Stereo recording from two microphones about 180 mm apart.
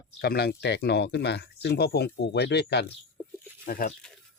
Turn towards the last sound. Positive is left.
turn(degrees=50)  # may be behind; listen again after turning